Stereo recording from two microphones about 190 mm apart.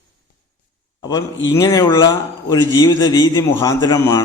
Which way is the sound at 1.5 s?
20° left (ahead or behind).